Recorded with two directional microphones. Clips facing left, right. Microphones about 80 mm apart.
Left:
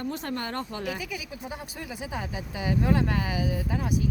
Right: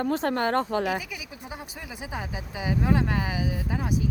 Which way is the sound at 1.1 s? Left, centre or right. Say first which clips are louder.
Left 2 dB; centre.